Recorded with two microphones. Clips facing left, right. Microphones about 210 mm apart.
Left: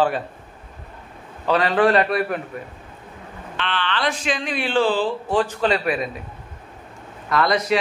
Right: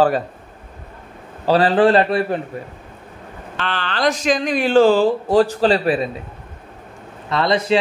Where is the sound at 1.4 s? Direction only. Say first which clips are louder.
Right 4 dB; 30° right (ahead or behind).